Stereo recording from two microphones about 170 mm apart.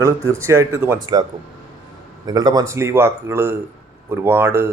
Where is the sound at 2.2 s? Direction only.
20° right (ahead or behind).